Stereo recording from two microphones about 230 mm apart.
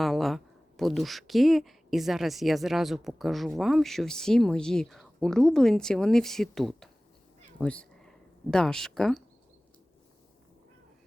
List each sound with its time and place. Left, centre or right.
0.0 s speech: centre